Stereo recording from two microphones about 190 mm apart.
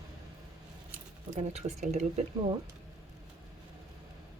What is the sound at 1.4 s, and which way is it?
Speech, 35° right (ahead or behind).